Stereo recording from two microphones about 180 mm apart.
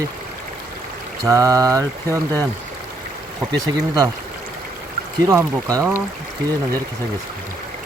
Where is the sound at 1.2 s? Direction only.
20° right (ahead or behind).